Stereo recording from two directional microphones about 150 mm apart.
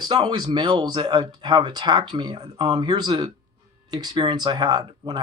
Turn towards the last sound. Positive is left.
turn(degrees=-25)  # may be behind; listen again after turning